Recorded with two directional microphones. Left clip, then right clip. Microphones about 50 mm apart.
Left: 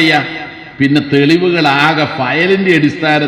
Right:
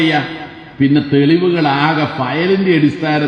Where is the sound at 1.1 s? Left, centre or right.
Left.